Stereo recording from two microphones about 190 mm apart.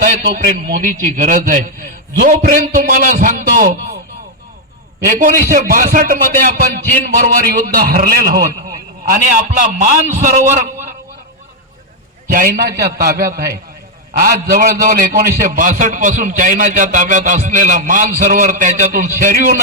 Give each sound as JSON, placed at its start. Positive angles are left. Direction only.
{"t": 0.0, "sound": "a man's voice", "side_deg": -45}
{"t": 5.0, "sound": "a man's voice", "side_deg": -45}
{"t": 12.3, "sound": "a man's voice", "side_deg": -50}